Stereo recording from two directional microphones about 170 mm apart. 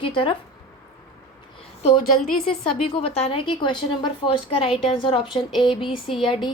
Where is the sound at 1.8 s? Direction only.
45° left (ahead or behind).